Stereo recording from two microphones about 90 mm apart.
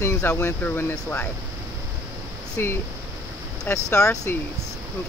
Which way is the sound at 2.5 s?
30° left (ahead or behind).